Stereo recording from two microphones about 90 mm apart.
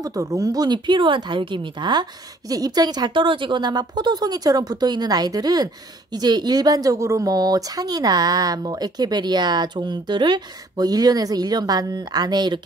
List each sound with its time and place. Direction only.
0.0 s speech: 40° right (ahead or behind)